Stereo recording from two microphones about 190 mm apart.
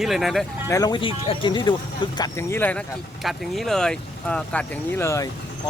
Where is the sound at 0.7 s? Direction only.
20° left (ahead or behind).